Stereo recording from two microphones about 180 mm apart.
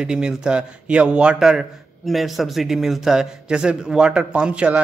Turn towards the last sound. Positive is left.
turn(degrees=-5)  # may be behind; listen again after turning